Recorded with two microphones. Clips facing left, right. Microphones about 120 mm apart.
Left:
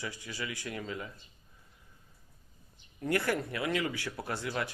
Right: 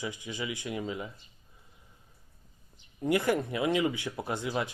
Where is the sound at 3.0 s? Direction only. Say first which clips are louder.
Right 4 dB; 15° right (ahead or behind).